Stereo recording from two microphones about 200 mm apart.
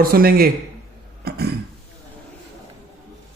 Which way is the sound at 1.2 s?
50° right (ahead or behind).